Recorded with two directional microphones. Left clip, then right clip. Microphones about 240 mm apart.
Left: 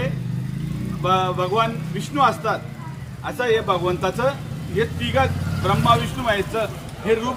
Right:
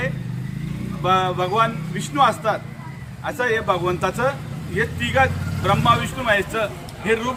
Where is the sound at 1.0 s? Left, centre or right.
Centre.